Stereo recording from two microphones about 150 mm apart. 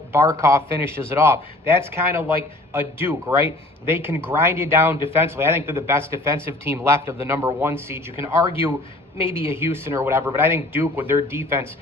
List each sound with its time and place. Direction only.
0.1 s speech: 20° right (ahead or behind)